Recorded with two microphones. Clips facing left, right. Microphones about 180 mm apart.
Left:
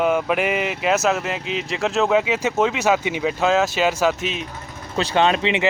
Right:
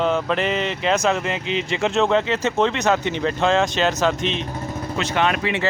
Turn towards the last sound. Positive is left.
turn(degrees=20)  # may be behind; listen again after turning